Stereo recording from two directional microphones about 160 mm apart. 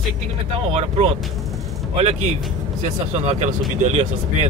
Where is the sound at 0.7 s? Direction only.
40° right (ahead or behind).